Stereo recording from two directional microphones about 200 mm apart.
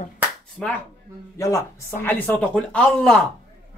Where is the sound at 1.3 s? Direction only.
15° left (ahead or behind).